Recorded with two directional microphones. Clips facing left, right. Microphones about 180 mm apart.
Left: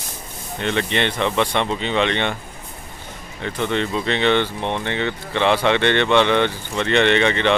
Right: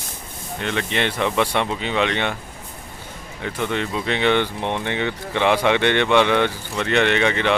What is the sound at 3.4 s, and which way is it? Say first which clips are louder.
Speech: left 2 dB; 10° right (ahead or behind).